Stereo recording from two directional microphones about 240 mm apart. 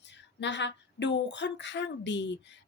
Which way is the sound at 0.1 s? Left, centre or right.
Left.